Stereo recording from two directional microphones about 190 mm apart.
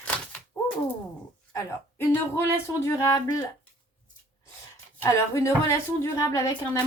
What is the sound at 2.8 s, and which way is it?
Speech, 15° left (ahead or behind).